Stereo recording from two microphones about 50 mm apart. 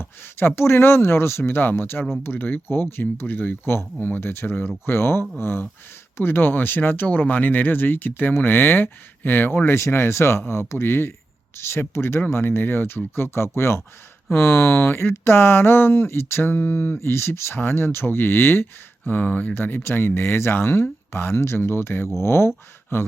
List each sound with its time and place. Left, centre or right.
0.0 s speech: left
19.5 s speech: left